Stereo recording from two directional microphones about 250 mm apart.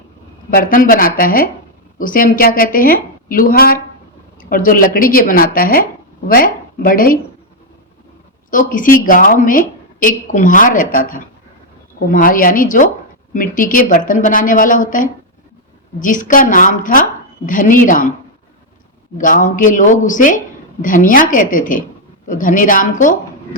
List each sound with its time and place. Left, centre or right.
0.5 s speech: left
8.4 s speech: left
19.1 s speech: left